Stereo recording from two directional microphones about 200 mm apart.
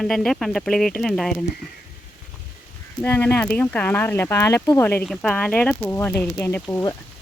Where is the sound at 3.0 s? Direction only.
10° left (ahead or behind).